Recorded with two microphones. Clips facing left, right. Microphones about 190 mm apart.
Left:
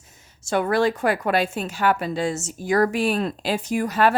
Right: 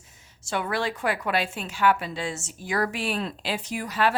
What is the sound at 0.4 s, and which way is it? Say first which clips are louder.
A woman's voice: left 8 dB; 45° left (ahead or behind).